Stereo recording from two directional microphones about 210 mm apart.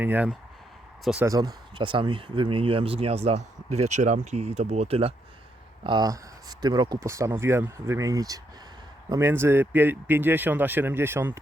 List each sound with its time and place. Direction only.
0.0 s speech: 10° right (ahead or behind)
1.3 s speech: 20° right (ahead or behind)